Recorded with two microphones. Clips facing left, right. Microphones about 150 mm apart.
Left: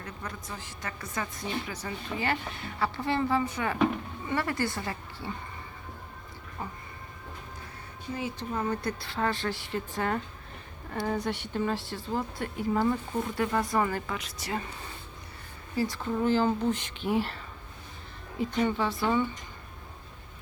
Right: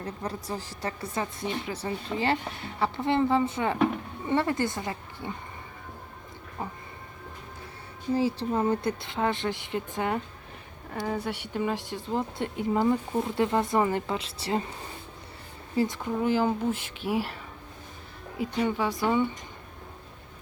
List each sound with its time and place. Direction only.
0.0 s a woman's voice: 35° right (ahead or behind)
6.6 s a woman's voice: 25° right (ahead or behind)
8.1 s a woman's voice: 30° right (ahead or behind)
10.9 s a woman's voice: 5° right (ahead or behind); by 14.6 s 30° right (ahead or behind)
15.7 s speech: 20° right (ahead or behind)